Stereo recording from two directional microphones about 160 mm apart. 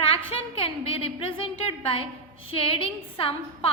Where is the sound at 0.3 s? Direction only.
35° left (ahead or behind).